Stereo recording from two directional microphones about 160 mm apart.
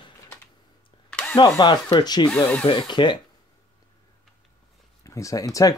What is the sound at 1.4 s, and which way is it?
Speech, 30° left (ahead or behind).